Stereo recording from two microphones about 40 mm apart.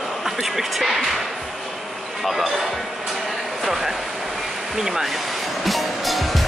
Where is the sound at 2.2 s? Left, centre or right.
Centre.